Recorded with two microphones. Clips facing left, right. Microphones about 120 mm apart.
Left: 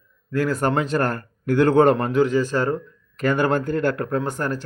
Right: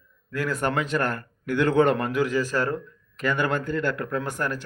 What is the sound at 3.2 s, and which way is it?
Speech, 40° left (ahead or behind).